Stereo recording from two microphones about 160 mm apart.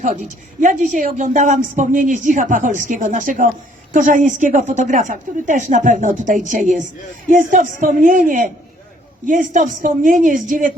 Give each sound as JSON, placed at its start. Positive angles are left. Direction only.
{"t": 0.6, "sound": "speech", "side_deg": -50}